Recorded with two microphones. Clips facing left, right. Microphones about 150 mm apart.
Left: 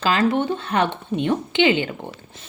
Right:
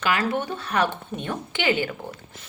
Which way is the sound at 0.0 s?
25° left (ahead or behind).